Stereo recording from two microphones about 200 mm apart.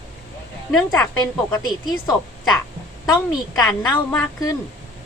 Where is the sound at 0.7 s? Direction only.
5° left (ahead or behind).